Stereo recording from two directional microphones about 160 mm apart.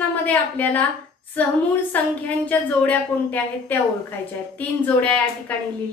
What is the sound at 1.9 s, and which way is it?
A woman's voice, 10° left (ahead or behind).